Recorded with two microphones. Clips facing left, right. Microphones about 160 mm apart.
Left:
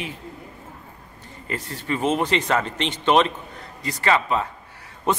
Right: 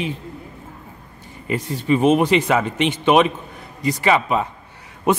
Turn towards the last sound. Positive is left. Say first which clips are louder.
# right 5 dB
turn(degrees=-10)  # may be behind; listen again after turning